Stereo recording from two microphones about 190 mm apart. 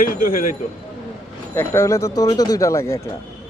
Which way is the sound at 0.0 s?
45° left (ahead or behind).